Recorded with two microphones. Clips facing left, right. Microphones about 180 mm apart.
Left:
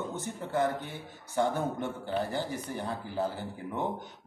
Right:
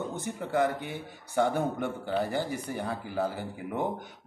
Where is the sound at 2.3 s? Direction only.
10° right (ahead or behind).